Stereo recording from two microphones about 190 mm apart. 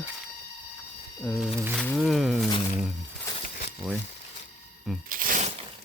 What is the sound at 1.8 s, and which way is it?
Music, 5° left (ahead or behind).